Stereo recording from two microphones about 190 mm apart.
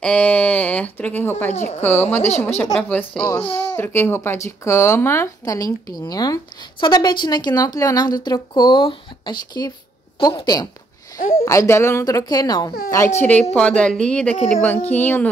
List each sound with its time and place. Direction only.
0.0 s speech: 5° left (ahead or behind)
2.1 s a woman's voice: 35° left (ahead or behind)
2.4 s speech: 10° left (ahead or behind)
11.1 s a sound: 50° left (ahead or behind)
11.4 s speech: 15° left (ahead or behind)
13.2 s a woman's voice: 5° left (ahead or behind)